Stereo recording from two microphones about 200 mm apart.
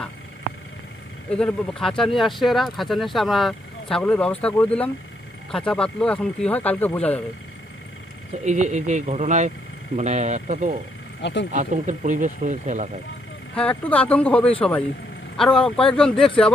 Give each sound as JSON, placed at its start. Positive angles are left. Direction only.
{"t": 1.3, "sound": "speech", "side_deg": 5}
{"t": 8.4, "sound": "speech", "side_deg": -35}
{"t": 11.2, "sound": "speech", "side_deg": 60}
{"t": 11.5, "sound": "speech", "side_deg": -40}
{"t": 13.6, "sound": "speech", "side_deg": 5}